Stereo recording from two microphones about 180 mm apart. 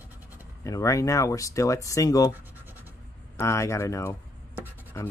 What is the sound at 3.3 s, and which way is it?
Speech, 15° left (ahead or behind).